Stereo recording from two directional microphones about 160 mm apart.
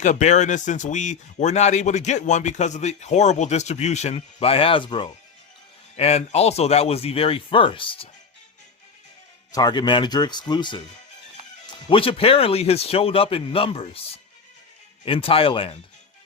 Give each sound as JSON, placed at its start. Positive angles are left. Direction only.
{"t": 0.0, "sound": "speech", "side_deg": 50}
{"t": 6.0, "sound": "speech", "side_deg": 40}
{"t": 9.5, "sound": "speech", "side_deg": 25}
{"t": 11.9, "sound": "speech", "side_deg": 35}
{"t": 15.0, "sound": "speech", "side_deg": 35}